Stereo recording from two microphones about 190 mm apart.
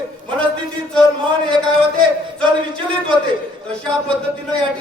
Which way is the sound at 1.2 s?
25° right (ahead or behind).